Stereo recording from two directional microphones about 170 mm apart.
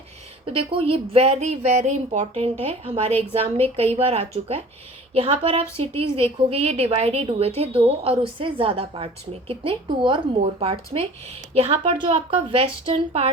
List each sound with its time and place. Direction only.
0.4 s a woman's voice: 35° right (ahead or behind)